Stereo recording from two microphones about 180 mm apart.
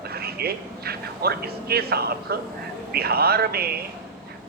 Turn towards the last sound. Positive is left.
turn(degrees=-60)  # may be behind; listen again after turning